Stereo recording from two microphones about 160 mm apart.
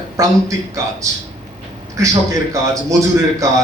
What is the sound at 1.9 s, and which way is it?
A man's voice, 20° right (ahead or behind).